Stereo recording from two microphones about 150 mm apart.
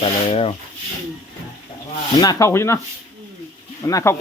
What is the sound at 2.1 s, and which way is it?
Speech, 25° left (ahead or behind).